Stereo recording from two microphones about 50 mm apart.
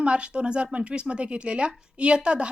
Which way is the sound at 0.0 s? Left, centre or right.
Centre.